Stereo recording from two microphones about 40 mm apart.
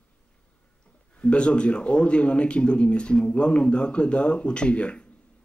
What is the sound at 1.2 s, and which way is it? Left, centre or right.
Speech, left.